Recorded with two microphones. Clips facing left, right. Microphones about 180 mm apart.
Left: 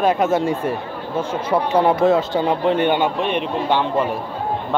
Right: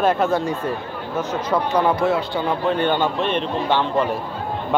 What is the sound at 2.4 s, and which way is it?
A man's voice, 25° left (ahead or behind).